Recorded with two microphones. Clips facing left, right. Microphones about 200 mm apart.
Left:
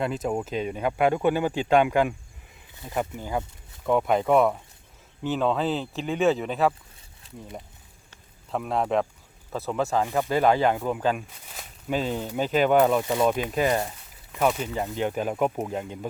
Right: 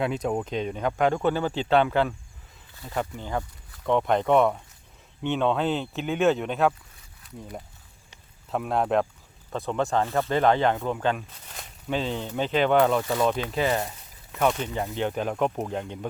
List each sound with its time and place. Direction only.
0.0 s speech: centre (ahead or behind)
8.4 s speech: centre (ahead or behind)
13.0 s speech: 20° left (ahead or behind)